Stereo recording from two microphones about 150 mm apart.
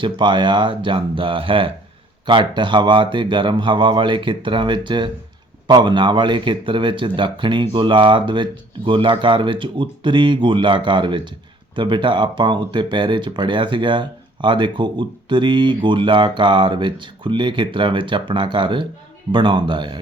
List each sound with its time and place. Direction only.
0.0 s speech: 30° right (ahead or behind)